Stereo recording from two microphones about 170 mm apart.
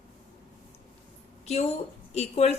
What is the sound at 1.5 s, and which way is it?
A woman's voice, 40° left (ahead or behind).